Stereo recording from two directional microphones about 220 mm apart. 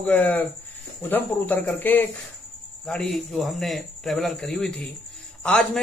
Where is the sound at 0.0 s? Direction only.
5° left (ahead or behind).